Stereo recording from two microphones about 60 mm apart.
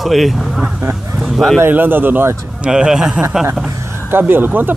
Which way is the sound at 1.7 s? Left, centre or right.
Right.